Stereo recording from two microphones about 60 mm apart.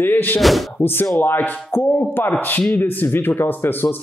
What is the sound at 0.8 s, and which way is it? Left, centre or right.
A man's voice, left.